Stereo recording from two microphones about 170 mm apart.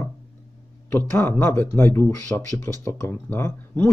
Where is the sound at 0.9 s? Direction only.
15° left (ahead or behind).